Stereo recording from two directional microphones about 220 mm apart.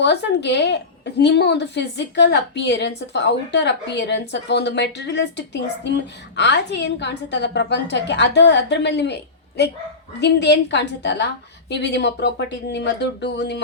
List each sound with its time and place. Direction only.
0.0 s a woman's voice: 50° left (ahead or behind)